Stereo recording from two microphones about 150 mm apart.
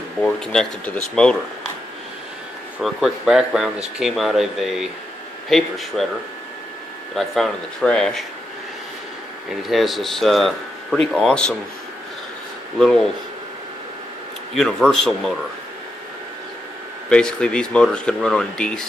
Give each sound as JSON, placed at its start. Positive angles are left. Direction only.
{"t": 0.2, "sound": "speech", "side_deg": 5}
{"t": 2.8, "sound": "speech", "side_deg": 0}
{"t": 7.2, "sound": "speech", "side_deg": 0}
{"t": 9.6, "sound": "speech", "side_deg": 0}
{"t": 12.7, "sound": "speech", "side_deg": 5}
{"t": 14.5, "sound": "speech", "side_deg": 5}
{"t": 17.1, "sound": "speech", "side_deg": 5}